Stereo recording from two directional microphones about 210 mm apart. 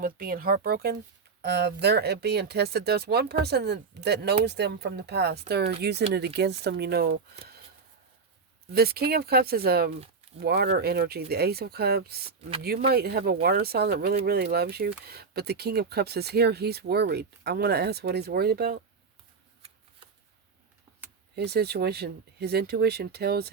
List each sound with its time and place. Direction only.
0.0 s speech: 45° right (ahead or behind)
8.7 s speech: 45° right (ahead or behind)
21.3 s speech: 50° right (ahead or behind)